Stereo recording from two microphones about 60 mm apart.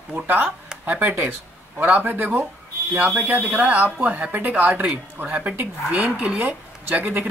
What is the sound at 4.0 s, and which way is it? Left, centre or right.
Speech, centre.